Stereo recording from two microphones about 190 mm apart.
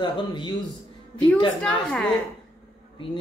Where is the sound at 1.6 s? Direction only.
5° left (ahead or behind).